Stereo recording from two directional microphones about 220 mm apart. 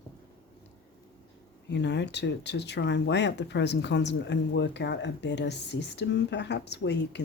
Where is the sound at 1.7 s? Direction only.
55° left (ahead or behind).